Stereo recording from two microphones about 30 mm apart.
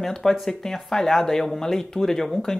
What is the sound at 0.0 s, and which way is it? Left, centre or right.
Speech, centre.